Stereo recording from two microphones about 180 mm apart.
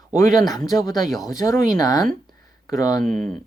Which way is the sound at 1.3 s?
20° left (ahead or behind).